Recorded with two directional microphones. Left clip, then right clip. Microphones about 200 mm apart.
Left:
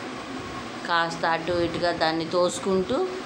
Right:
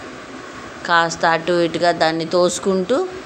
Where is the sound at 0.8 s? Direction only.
35° right (ahead or behind).